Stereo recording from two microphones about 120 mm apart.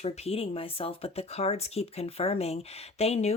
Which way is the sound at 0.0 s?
55° left (ahead or behind).